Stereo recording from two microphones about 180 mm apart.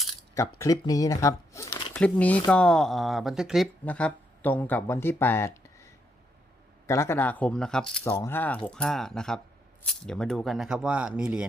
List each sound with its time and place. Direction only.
0.6 s speech: 20° left (ahead or behind)
8.0 s speech: 15° left (ahead or behind); by 11.4 s 5° right (ahead or behind)